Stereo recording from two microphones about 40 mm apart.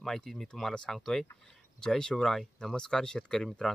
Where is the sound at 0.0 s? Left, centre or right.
Centre.